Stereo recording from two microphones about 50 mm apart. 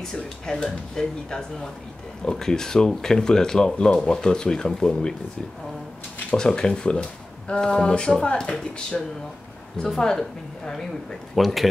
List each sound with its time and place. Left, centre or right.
0.0 s speech: centre
6.3 s speech: centre